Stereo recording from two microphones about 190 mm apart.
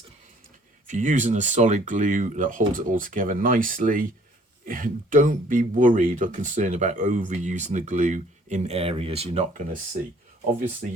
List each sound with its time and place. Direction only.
0.9 s speech: 40° right (ahead or behind)